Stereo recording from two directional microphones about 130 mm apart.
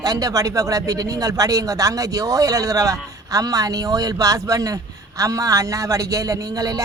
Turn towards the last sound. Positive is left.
turn(degrees=-30)  # may be behind; listen again after turning